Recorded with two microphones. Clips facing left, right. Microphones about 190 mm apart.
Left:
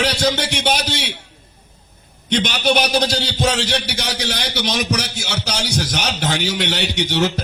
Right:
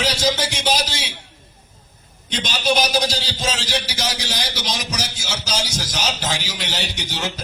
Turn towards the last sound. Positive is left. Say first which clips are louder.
# left 9 dB
turn(degrees=65)  # may be behind; listen again after turning